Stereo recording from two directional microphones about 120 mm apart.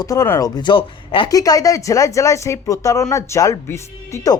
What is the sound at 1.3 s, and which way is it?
Speech, 30° left (ahead or behind).